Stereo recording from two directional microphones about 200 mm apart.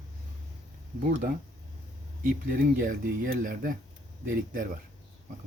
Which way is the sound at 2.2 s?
45° right (ahead or behind).